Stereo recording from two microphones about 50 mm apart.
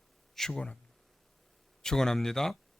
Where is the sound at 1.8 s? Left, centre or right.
Centre.